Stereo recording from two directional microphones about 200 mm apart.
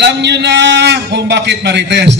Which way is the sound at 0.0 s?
60° right (ahead or behind).